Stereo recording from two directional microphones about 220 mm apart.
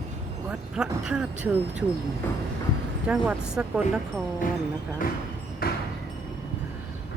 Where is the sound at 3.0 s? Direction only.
5° right (ahead or behind).